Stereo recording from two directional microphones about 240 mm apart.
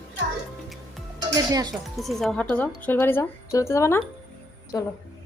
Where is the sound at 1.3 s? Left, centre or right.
Centre.